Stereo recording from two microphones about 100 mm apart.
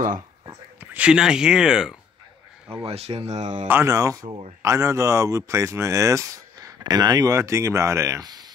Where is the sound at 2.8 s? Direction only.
90° right.